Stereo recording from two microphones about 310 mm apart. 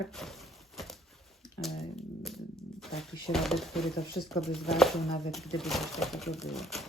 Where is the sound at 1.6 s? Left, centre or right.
Centre.